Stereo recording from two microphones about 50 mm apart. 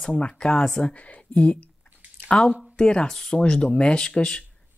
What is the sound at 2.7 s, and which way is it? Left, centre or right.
Speech, centre.